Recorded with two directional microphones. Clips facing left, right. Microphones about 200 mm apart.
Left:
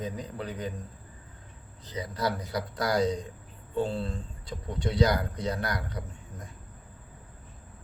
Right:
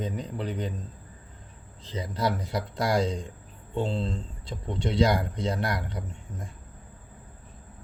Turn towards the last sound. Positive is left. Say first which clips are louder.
# right 2 dB
turn(degrees=-25)  # may be behind; listen again after turning